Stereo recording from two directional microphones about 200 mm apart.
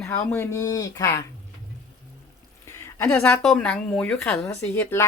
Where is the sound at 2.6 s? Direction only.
10° left (ahead or behind).